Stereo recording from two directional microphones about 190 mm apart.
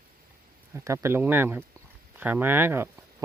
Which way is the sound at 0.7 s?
15° right (ahead or behind).